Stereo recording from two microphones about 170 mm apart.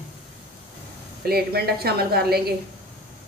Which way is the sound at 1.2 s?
65° right (ahead or behind).